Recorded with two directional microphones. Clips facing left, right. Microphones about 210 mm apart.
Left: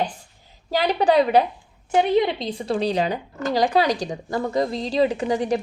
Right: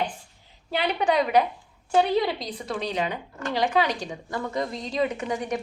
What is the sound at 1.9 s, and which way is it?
A woman's voice, 20° left (ahead or behind).